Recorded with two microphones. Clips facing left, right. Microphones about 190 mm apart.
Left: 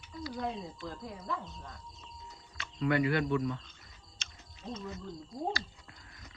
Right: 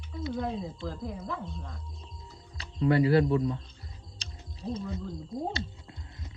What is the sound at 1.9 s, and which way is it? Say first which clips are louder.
Music: right 2 dB; 30° right (ahead or behind).